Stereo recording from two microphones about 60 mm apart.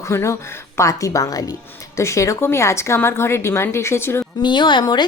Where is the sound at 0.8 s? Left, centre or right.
Left.